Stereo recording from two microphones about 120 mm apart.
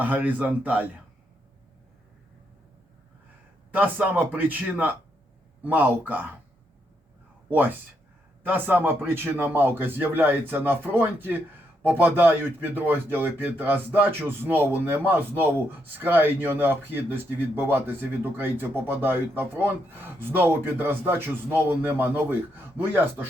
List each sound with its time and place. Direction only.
0.0 s speech: 15° right (ahead or behind)
3.7 s speech: 15° right (ahead or behind)
8.4 s speech: 15° right (ahead or behind)